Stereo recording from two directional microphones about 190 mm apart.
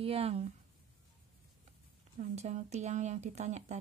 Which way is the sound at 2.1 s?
35° right (ahead or behind).